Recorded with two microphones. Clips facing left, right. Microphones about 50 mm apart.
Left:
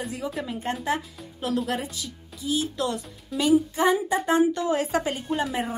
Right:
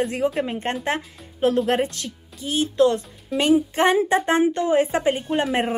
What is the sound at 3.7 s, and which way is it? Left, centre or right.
Speech, right.